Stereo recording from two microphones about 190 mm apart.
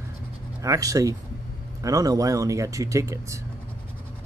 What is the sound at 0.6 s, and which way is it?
Speech, 15° right (ahead or behind).